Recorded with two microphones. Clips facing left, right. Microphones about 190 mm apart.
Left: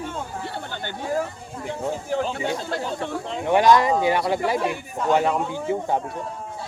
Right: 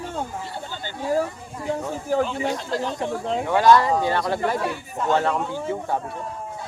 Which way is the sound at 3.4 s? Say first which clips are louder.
Left 1 dB; 20° left (ahead or behind).